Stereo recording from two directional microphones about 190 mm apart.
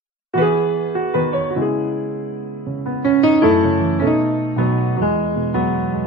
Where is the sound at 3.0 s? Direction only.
Centre (ahead or behind).